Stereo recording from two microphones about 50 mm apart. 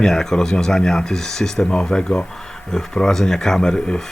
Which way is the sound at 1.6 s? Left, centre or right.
Centre.